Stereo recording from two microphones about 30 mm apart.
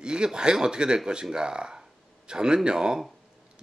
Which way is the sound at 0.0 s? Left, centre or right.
Right.